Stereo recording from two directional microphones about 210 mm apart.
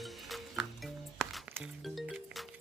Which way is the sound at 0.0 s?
Centre (ahead or behind).